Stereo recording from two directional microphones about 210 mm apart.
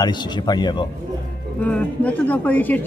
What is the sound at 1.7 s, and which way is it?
A woman's voice, 5° left (ahead or behind).